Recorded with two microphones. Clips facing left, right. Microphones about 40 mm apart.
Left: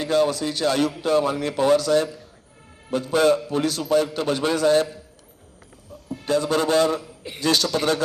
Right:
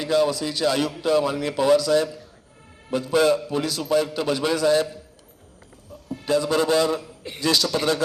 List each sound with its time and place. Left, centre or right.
0.0 s a man's voice: left
6.2 s a man's voice: left